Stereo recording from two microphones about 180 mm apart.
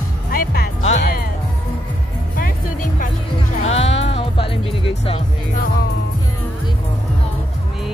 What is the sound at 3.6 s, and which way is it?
Music, 35° left (ahead or behind).